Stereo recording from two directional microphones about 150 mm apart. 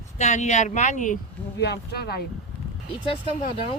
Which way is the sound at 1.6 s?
90° left.